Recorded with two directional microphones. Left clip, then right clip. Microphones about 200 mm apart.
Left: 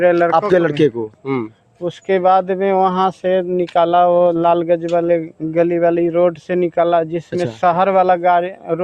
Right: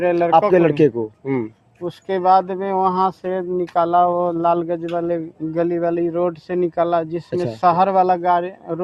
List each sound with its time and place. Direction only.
0.0 s a man's voice: 40° left (ahead or behind)
0.7 s speech: 10° left (ahead or behind)
1.8 s speech: 50° left (ahead or behind)